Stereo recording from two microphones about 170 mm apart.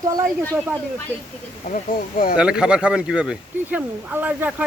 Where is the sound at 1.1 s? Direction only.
10° right (ahead or behind).